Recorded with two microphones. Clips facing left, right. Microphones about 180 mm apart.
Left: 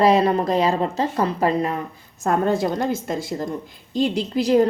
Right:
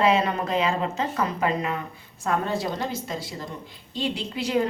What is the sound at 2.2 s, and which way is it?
A woman's voice, 45° left (ahead or behind).